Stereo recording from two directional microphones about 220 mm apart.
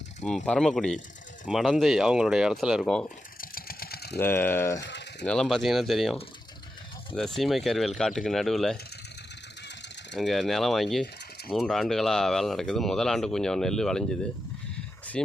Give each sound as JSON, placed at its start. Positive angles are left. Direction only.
{"t": 0.3, "sound": "speech", "side_deg": 5}
{"t": 3.4, "sound": "a sound", "side_deg": 40}
{"t": 4.2, "sound": "speech", "side_deg": 10}
{"t": 4.8, "sound": "speech", "side_deg": 50}
{"t": 5.2, "sound": "speech", "side_deg": 5}
{"t": 7.2, "sound": "speech", "side_deg": 0}
{"t": 10.2, "sound": "speech", "side_deg": 0}